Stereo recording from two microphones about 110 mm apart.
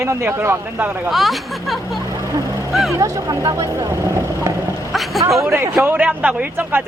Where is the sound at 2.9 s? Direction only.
30° right (ahead or behind).